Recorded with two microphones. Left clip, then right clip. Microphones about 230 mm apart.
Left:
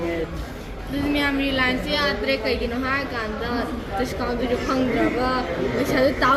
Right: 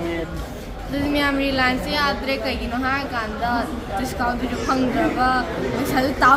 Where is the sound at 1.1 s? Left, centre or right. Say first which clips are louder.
Right 2 dB; centre.